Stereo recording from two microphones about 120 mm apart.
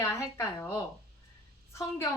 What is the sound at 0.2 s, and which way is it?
Speech, 25° left (ahead or behind).